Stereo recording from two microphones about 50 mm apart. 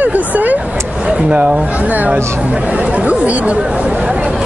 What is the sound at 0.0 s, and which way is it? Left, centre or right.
Vehicle, right.